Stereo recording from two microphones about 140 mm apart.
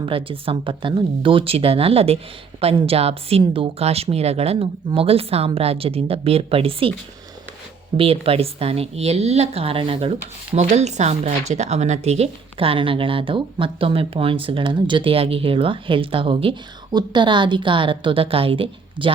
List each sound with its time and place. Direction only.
0.0 s a woman's voice: 40° right (ahead or behind)
7.9 s a woman's voice: 40° right (ahead or behind)